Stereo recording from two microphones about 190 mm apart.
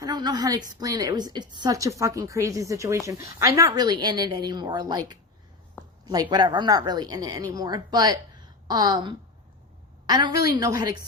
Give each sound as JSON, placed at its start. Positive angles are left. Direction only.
{"t": 0.0, "sound": "a woman's voice", "side_deg": -20}
{"t": 6.3, "sound": "a woman's voice", "side_deg": -25}